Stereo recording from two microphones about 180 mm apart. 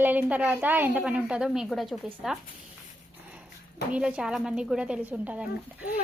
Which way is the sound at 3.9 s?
5° right (ahead or behind).